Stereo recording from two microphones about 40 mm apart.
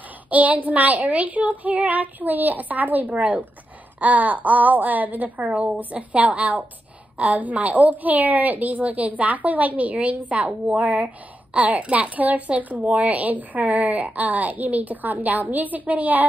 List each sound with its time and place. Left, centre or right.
0.3 s a woman's voice: right